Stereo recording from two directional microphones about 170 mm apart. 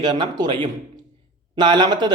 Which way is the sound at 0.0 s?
25° right (ahead or behind).